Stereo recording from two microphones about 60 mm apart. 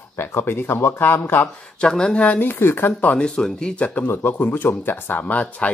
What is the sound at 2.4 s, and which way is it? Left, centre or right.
Speech, left.